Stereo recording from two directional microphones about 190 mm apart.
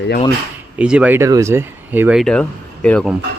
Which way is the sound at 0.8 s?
5° right (ahead or behind).